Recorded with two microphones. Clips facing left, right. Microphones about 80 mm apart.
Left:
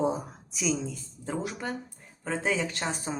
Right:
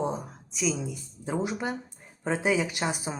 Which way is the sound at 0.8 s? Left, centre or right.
Centre.